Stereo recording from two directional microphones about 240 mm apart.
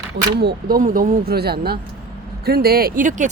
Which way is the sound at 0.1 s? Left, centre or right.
Right.